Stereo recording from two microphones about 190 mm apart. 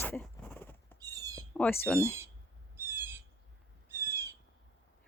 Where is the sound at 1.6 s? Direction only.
10° left (ahead or behind).